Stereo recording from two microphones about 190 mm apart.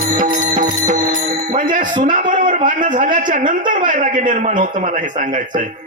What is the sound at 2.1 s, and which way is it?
A man's voice, 45° right (ahead or behind).